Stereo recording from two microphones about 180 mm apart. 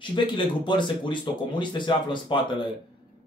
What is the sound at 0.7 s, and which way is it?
Speech, 25° left (ahead or behind).